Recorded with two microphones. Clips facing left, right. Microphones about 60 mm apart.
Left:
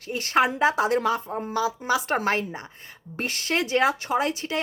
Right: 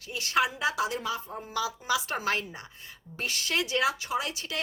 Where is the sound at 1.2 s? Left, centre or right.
Left.